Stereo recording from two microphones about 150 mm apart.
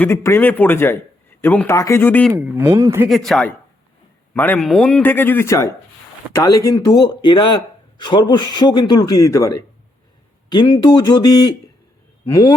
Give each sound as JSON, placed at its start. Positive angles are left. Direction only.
{"t": 0.0, "sound": "speech", "side_deg": 15}
{"t": 2.3, "sound": "speech", "side_deg": -15}
{"t": 3.1, "sound": "a man's voice", "side_deg": 0}